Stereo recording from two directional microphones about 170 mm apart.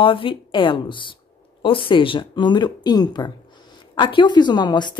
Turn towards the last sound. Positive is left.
turn(degrees=25)  # may be behind; listen again after turning